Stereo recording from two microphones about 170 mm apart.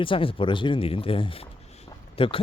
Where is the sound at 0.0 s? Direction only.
30° left (ahead or behind).